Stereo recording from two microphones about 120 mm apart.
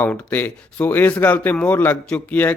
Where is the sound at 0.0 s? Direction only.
15° left (ahead or behind).